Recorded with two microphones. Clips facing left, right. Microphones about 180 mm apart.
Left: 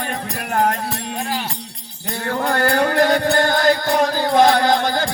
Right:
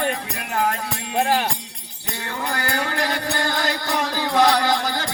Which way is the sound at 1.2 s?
50° right (ahead or behind).